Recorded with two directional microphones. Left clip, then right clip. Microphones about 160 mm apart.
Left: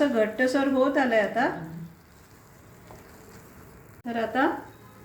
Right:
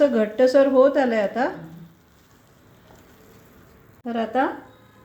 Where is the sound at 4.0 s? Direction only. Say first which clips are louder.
Right 4 dB; 90° right.